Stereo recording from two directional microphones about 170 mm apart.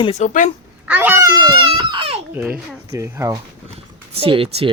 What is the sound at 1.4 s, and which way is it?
Baby cry, 25° right (ahead or behind).